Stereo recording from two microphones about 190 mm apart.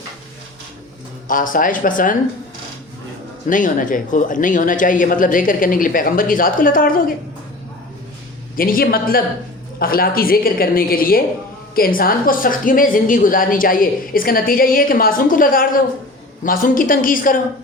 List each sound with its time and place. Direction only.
1.3 s a woman's voice: 45° left (ahead or behind)
3.5 s a woman's voice: 45° left (ahead or behind)
8.5 s a woman's voice: 50° left (ahead or behind)